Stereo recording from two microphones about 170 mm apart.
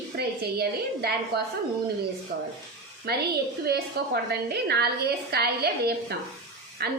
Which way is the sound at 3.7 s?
70° right (ahead or behind).